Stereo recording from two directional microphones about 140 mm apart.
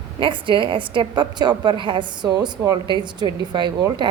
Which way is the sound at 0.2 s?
35° right (ahead or behind).